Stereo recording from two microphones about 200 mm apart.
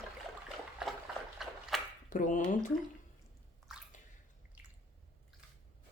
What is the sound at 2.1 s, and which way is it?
Speech, 40° left (ahead or behind).